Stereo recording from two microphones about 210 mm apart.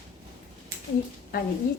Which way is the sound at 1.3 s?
45° left (ahead or behind).